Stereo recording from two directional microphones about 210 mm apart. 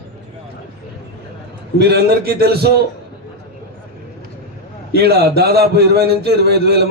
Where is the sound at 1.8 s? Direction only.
50° right (ahead or behind).